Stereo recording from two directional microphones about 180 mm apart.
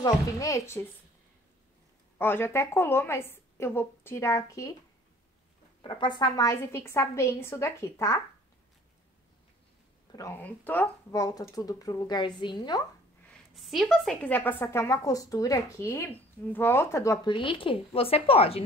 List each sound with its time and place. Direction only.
0.0 s a woman's voice: 20° left (ahead or behind)
2.1 s a woman's voice: 10° left (ahead or behind)
5.8 s a woman's voice: 25° left (ahead or behind)
10.1 s a woman's voice: 15° left (ahead or behind)
13.3 s a woman's voice: centre (ahead or behind); by 18.6 s 30° left (ahead or behind)